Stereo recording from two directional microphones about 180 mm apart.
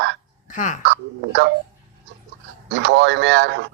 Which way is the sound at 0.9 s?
75° right (ahead or behind).